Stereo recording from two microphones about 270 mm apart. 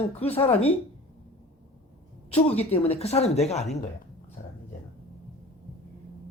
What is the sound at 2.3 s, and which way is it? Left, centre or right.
Speech, left.